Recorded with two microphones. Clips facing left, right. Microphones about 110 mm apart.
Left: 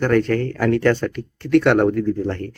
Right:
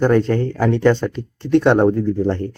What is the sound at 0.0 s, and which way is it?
Speech, 25° right (ahead or behind).